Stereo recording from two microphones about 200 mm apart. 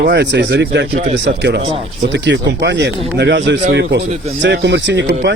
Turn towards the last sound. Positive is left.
turn(degrees=-60)  # may be behind; listen again after turning